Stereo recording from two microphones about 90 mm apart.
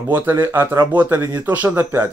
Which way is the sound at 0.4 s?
30° right (ahead or behind).